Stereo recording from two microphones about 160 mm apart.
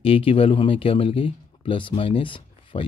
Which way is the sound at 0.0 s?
35° left (ahead or behind).